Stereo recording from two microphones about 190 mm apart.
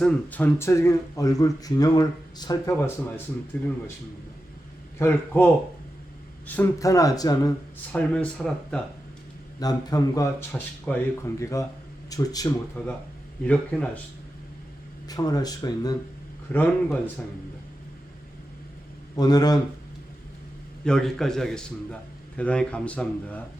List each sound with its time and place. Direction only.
0.0 s speech: 5° left (ahead or behind)
4.9 s speech: 10° left (ahead or behind)
6.6 s speech: 15° left (ahead or behind)
7.9 s speech: 5° left (ahead or behind)
9.6 s speech: 20° left (ahead or behind)
15.0 s speech: 20° left (ahead or behind)
19.1 s speech: 20° left (ahead or behind)
20.8 s speech: 5° left (ahead or behind)